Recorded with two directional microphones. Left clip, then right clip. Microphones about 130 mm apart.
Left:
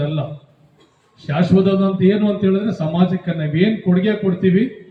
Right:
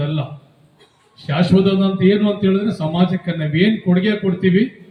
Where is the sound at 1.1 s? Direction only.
Centre (ahead or behind).